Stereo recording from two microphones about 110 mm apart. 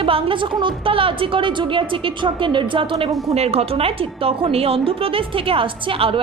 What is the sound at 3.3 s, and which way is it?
A woman's voice, 70° right (ahead or behind).